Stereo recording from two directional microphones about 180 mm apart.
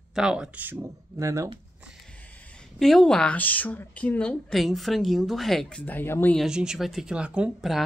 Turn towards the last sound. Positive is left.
turn(degrees=-5)  # may be behind; listen again after turning